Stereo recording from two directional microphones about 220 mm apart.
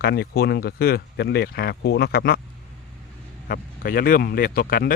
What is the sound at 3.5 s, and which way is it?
Speech, 40° left (ahead or behind).